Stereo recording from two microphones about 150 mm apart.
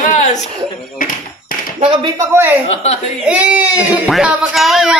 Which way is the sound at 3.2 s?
10° right (ahead or behind).